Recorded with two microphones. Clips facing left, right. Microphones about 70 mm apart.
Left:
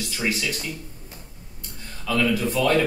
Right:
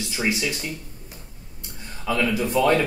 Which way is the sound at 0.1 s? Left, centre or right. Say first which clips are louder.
Right 2 dB; centre.